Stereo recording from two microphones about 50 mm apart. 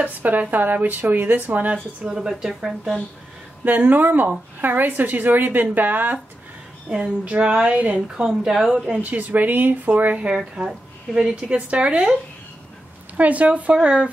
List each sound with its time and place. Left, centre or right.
0.0 s a woman's voice: right
2.0 s a woman's voice: centre
3.6 s a woman's voice: right
7.2 s a woman's voice: right
8.5 s a woman's voice: centre
8.9 s a woman's voice: right
10.5 s a woman's voice: centre
13.2 s a woman's voice: right